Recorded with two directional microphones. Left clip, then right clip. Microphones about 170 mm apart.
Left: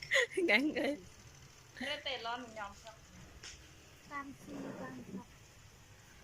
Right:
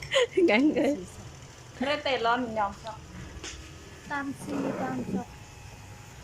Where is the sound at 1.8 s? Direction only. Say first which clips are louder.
Right 13 dB; 90° right.